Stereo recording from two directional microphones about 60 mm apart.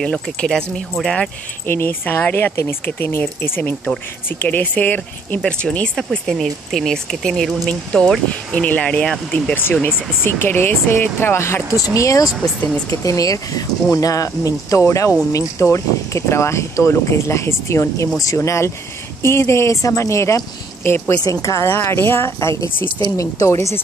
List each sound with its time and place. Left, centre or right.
0.0 s speech: centre
1.7 s speech: left
5.4 s speech: centre
5.9 s speech: centre; by 9.1 s left
9.8 s speech: left
11.7 s speech: left
14.9 s speech: left
21.2 s speech: left
21.8 s speech: left
23.0 s speech: left